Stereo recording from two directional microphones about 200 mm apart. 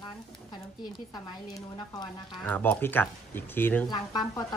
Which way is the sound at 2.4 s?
10° left (ahead or behind).